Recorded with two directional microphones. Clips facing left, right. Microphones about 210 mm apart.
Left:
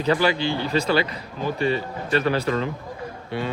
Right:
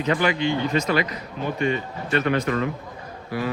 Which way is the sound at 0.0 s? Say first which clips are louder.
Left 1 dB; 35° left (ahead or behind).